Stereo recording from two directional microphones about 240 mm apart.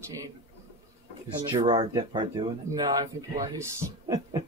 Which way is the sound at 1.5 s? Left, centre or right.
Right.